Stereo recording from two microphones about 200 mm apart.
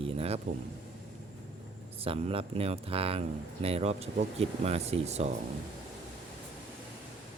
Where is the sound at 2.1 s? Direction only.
30° right (ahead or behind).